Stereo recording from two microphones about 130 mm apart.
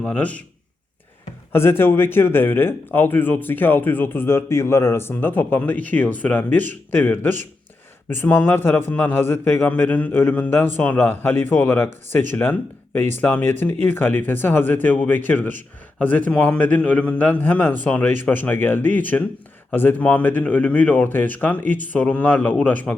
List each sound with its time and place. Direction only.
0.0 s speech: 10° left (ahead or behind)
1.5 s speech: 20° left (ahead or behind)